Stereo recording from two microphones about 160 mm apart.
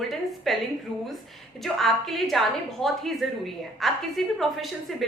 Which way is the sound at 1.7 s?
Centre (ahead or behind).